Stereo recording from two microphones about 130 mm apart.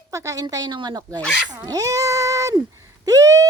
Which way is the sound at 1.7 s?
25° right (ahead or behind).